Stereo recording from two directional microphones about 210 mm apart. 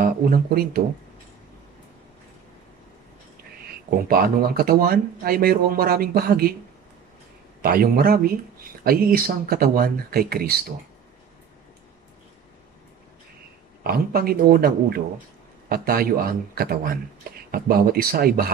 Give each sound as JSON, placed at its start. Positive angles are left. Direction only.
{"t": 0.0, "sound": "speech", "side_deg": -45}
{"t": 4.1, "sound": "speech", "side_deg": -45}
{"t": 7.6, "sound": "speech", "side_deg": -45}
{"t": 13.8, "sound": "speech", "side_deg": -45}